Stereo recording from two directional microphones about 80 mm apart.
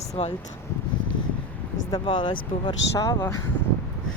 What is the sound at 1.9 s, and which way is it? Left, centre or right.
Speech, left.